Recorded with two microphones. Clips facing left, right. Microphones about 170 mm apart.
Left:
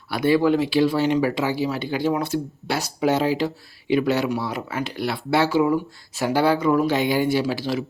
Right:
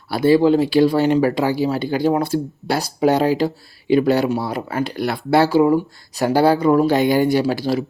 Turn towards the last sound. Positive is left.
turn(degrees=-40)  # may be behind; listen again after turning